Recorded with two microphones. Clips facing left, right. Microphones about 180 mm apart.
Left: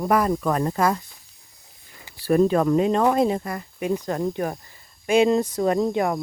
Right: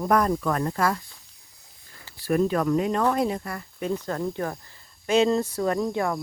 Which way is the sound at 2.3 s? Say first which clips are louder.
Left 4 dB; 30° left (ahead or behind).